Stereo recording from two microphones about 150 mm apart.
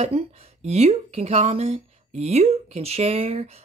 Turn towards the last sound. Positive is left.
turn(degrees=-40)  # may be behind; listen again after turning